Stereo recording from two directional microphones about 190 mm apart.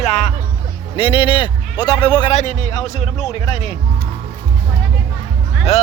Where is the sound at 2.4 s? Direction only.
40° left (ahead or behind).